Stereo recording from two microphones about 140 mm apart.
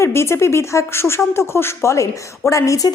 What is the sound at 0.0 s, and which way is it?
Speech, 20° left (ahead or behind).